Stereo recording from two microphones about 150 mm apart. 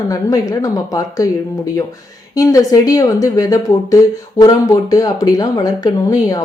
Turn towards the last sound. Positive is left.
turn(degrees=25)  # may be behind; listen again after turning